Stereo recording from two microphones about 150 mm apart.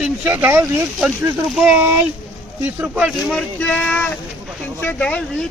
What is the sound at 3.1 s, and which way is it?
Speech, centre (ahead or behind).